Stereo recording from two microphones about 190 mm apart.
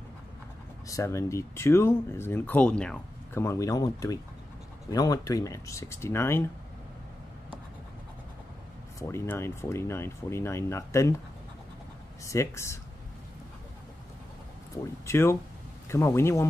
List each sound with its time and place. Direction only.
0.8 s speech: 15° left (ahead or behind)
9.1 s speech: 15° left (ahead or behind)
12.3 s speech: 15° left (ahead or behind)
15.0 s speech: 15° left (ahead or behind)